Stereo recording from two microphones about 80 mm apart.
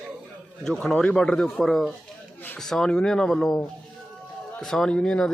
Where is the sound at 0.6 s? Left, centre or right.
Centre.